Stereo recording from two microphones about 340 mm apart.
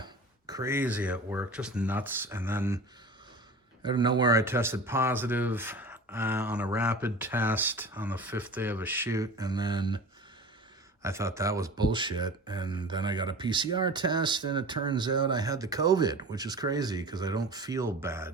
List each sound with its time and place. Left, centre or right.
0.0 s speech: centre
3.8 s speech: centre
11.0 s speech: centre